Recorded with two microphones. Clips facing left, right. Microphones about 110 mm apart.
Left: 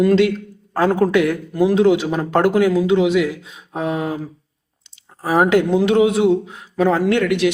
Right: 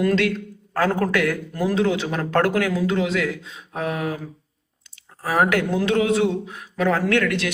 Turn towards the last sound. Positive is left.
turn(degrees=15)  # may be behind; listen again after turning